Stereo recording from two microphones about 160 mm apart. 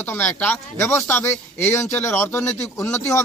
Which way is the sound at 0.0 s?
10° left (ahead or behind).